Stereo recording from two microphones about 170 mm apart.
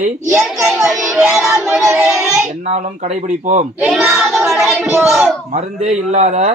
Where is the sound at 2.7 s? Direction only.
45° right (ahead or behind).